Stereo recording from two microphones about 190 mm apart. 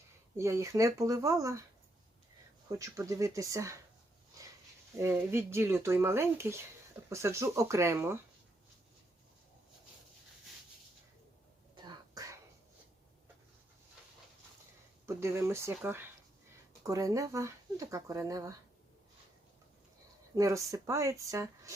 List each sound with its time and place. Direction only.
0.3 s speech: 15° right (ahead or behind)
2.6 s speech: 15° right (ahead or behind)
4.9 s speech: 15° right (ahead or behind)
11.7 s throat clearing: 20° right (ahead or behind)
15.0 s speech: 15° right (ahead or behind)
20.3 s speech: 15° right (ahead or behind)